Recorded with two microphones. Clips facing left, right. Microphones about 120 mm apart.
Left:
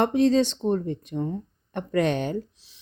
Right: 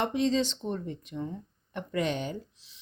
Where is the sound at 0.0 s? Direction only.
50° left (ahead or behind).